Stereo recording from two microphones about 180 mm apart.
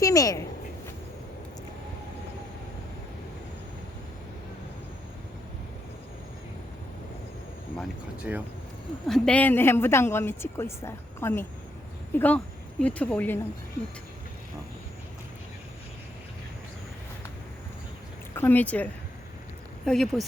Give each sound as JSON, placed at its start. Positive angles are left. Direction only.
{"t": 0.0, "sound": "speech", "side_deg": 20}
{"t": 8.3, "sound": "speech", "side_deg": -10}
{"t": 9.0, "sound": "a woman's voice", "side_deg": 5}
{"t": 18.3, "sound": "a woman's voice", "side_deg": 10}